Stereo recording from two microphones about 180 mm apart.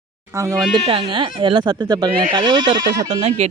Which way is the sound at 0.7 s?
30° right (ahead or behind).